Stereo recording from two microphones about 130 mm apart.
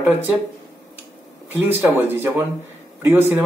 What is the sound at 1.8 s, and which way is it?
A man's voice, 15° right (ahead or behind).